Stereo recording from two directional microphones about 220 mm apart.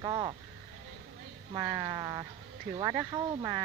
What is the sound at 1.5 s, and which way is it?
Speech, 20° right (ahead or behind).